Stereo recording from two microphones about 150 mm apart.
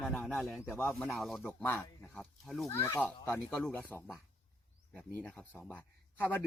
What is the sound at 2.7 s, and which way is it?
Speech, 15° left (ahead or behind).